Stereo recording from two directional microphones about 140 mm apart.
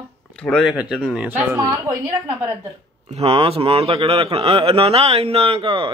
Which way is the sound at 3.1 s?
45° right (ahead or behind).